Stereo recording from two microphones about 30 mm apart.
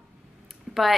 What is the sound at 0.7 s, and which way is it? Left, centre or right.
Typing, centre.